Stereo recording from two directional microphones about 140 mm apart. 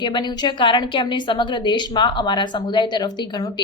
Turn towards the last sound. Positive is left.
turn(degrees=30)  # may be behind; listen again after turning